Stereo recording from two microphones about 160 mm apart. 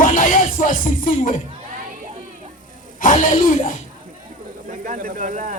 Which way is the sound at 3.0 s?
55° left (ahead or behind).